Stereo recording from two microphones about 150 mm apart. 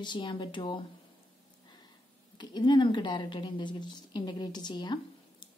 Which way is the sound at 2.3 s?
30° left (ahead or behind).